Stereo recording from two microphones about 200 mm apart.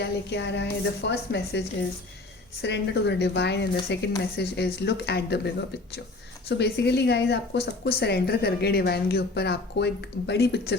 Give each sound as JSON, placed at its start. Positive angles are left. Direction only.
{"t": 0.0, "sound": "speech", "side_deg": 60}